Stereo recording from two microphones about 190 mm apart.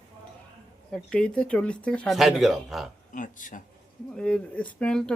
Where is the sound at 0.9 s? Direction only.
5° left (ahead or behind).